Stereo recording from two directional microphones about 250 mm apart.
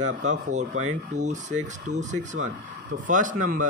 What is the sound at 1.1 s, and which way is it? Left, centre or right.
Speech, right.